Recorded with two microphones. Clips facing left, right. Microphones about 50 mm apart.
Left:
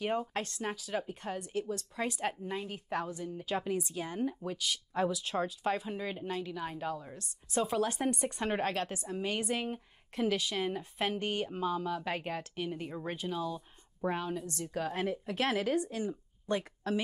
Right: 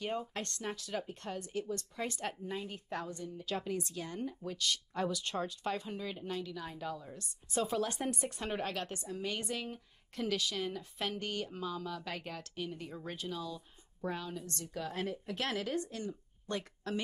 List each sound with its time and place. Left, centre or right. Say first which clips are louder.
0.3 s speech: left 4 dB; centre
4.6 s speech: left 1 dB; centre
5.9 s speech: left 3 dB; centre
7.2 s speech: left 1 dB; centre
8.8 s speech: left 3 dB; centre
9.1 s speech: left 4 dB; left
15.2 s speech: left 8 dB; centre